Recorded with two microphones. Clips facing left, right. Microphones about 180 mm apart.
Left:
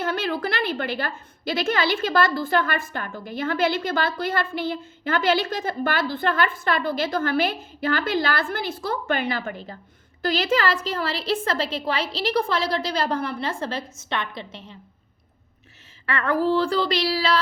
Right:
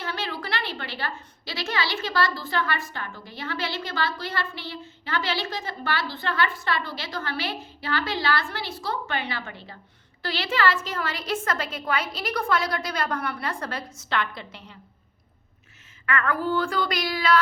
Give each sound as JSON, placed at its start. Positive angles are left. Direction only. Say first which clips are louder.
{"t": 0.0, "sound": "a woman's voice", "louder": "left 7 dB", "side_deg": 50}
{"t": 16.0, "sound": "a woman's voice", "louder": "left 4 dB", "side_deg": 35}